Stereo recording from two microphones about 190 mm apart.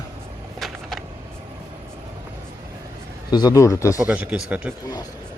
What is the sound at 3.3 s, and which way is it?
Speech, 20° left (ahead or behind).